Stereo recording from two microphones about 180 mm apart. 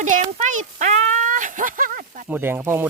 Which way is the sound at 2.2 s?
10° right (ahead or behind).